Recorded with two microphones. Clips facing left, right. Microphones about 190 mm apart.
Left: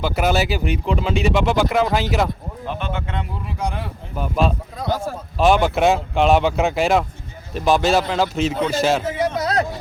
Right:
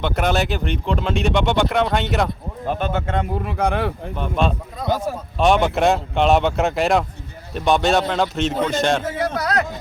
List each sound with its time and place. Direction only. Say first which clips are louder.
0.0 s speech: left 1 dB; 5° left (ahead or behind)
2.6 s speech: right 5 dB; 45° right (ahead or behind); by 3.9 s 65° right (ahead or behind)
4.1 s speech: left 4 dB; 5° left (ahead or behind)
4.9 s speech: right 2 dB; 20° right (ahead or behind)
5.4 s speech: left 1 dB; centre (ahead or behind)
9.1 s a man's voice: left 1 dB; 20° left (ahead or behind)